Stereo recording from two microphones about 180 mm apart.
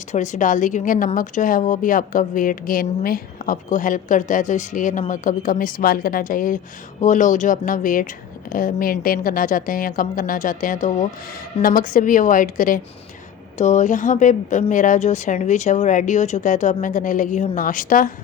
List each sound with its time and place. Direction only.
0.1 s speech: 45° left (ahead or behind)